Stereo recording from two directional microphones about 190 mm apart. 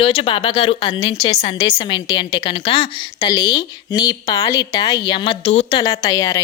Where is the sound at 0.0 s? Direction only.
30° left (ahead or behind).